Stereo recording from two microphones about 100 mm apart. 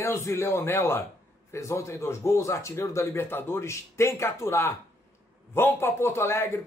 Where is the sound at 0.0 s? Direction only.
30° left (ahead or behind).